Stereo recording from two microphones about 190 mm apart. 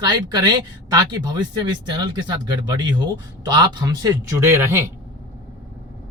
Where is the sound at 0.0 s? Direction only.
20° right (ahead or behind).